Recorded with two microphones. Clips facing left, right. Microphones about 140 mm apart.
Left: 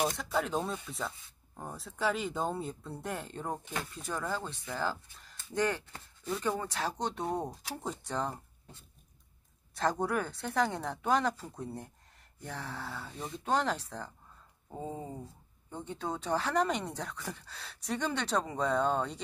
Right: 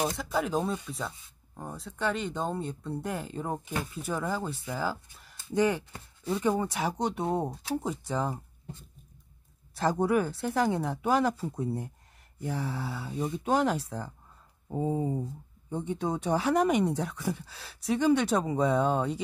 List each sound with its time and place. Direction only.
0.0 s speech: 5° right (ahead or behind)
9.8 s speech: 10° right (ahead or behind)